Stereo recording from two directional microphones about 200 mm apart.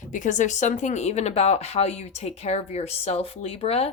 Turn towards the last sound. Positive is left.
turn(degrees=30)  # may be behind; listen again after turning